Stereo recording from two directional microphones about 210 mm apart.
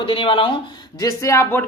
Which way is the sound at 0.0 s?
25° left (ahead or behind).